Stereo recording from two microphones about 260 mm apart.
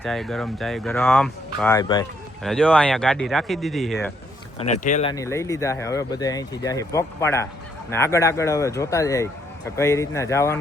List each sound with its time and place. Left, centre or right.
0.0 s speech: centre
2.4 s speech: centre
4.7 s speech: left
5.1 s speech: centre